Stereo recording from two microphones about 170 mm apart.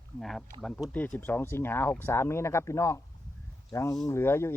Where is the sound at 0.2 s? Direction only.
Centre (ahead or behind).